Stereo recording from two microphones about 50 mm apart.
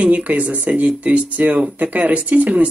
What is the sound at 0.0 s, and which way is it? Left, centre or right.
Speech, right.